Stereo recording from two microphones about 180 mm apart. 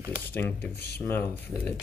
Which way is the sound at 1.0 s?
15° left (ahead or behind).